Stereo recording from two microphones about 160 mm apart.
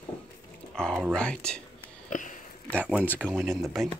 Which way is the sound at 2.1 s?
50° left (ahead or behind).